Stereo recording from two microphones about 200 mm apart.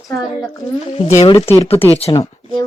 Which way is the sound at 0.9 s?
30° left (ahead or behind).